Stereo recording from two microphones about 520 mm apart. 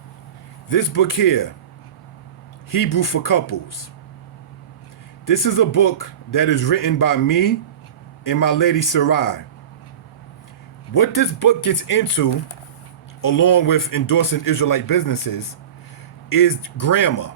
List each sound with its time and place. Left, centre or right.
0.7 s a man's voice: left
2.6 s a man's voice: left
5.2 s a man's voice: left
10.9 s a man's voice: left